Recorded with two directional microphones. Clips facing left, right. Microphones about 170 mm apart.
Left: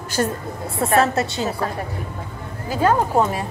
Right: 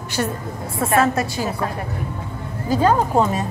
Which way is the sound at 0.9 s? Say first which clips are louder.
Even; 25° left (ahead or behind).